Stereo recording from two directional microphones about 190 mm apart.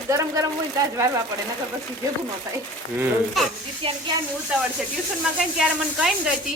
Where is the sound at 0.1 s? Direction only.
15° right (ahead or behind).